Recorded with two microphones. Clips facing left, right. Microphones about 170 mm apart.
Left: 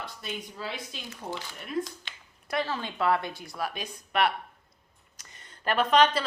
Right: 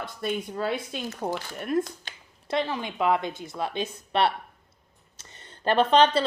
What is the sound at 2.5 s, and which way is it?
A woman's voice, 20° right (ahead or behind).